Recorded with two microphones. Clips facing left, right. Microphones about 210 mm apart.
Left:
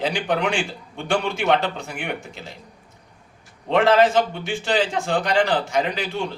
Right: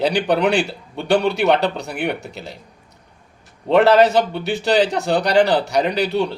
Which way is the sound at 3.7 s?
40° right (ahead or behind).